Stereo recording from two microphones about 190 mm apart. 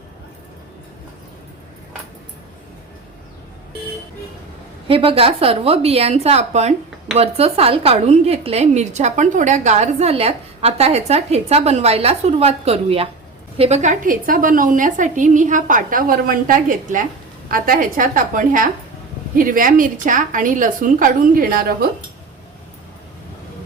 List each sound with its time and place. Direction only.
4.9 s a woman's voice: 30° right (ahead or behind); by 21.8 s 50° right (ahead or behind)